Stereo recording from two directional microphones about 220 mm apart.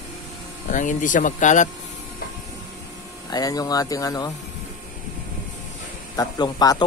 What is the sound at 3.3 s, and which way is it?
Speech, 15° left (ahead or behind).